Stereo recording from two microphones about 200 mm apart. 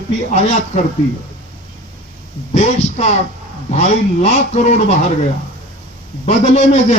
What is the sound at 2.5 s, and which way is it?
Speech, 35° left (ahead or behind).